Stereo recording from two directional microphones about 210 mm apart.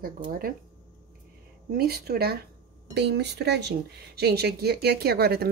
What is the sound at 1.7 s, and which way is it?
Speech, 45° right (ahead or behind).